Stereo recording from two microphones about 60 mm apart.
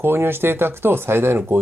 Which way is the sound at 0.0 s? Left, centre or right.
Right.